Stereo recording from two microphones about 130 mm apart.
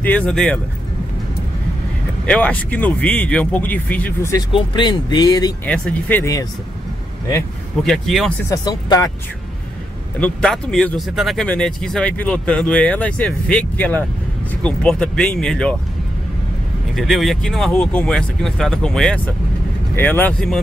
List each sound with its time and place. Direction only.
0.0 s speech: 10° left (ahead or behind)
2.2 s speech: 10° left (ahead or behind)
4.5 s speech: 40° left (ahead or behind)
5.7 s speech: 10° left (ahead or behind)
7.8 s speech: centre (ahead or behind)
8.5 s speech: 30° left (ahead or behind)
10.1 s speech: 10° left (ahead or behind)
16.9 s speech: centre (ahead or behind)